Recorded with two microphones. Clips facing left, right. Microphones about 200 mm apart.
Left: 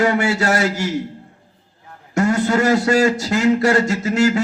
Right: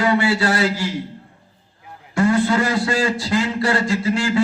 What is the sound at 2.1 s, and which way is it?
A man's voice, 45° left (ahead or behind).